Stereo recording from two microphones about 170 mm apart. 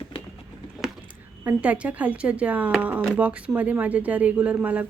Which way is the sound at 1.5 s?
10° right (ahead or behind).